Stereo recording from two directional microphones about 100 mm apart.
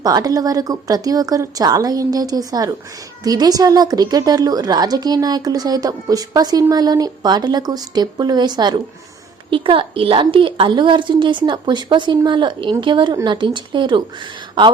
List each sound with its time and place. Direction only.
0.0 s a woman's voice: 40° right (ahead or behind)
9.5 s a woman's voice: 60° right (ahead or behind)